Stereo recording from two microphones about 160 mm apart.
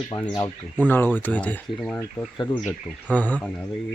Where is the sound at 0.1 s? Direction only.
25° left (ahead or behind).